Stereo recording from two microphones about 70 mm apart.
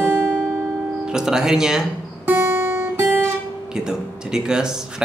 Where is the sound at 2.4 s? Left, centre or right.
Right.